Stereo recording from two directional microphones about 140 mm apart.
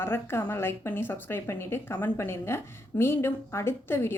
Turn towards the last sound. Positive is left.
turn(degrees=20)  # may be behind; listen again after turning